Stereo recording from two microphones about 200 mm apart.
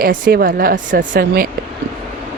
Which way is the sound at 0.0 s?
45° right (ahead or behind).